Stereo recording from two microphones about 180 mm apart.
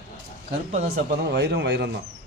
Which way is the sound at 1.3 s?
70° right (ahead or behind).